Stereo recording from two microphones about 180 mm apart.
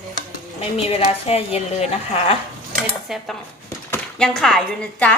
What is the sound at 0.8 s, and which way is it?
Speech, 35° left (ahead or behind).